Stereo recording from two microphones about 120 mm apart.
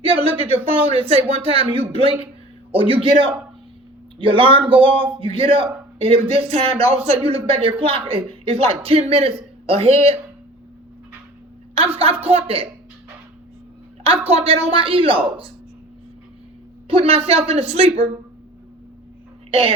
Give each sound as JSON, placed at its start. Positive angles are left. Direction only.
{"t": 0.0, "sound": "speech", "side_deg": -50}
{"t": 12.2, "sound": "speech", "side_deg": -55}
{"t": 14.0, "sound": "speech", "side_deg": -55}
{"t": 16.9, "sound": "speech", "side_deg": -55}
{"t": 19.5, "sound": "speech", "side_deg": -50}